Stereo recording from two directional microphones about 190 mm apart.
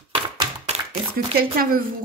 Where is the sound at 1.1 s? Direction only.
50° right (ahead or behind).